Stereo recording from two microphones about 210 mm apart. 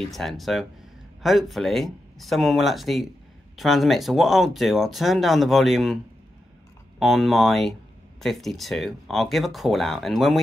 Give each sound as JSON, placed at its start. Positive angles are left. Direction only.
{"t": 0.0, "sound": "speech", "side_deg": 0}
{"t": 7.0, "sound": "speech", "side_deg": 0}